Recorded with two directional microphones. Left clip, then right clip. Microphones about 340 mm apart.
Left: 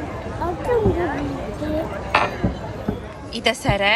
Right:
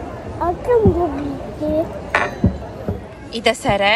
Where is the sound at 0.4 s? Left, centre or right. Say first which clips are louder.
Right 6 dB; right.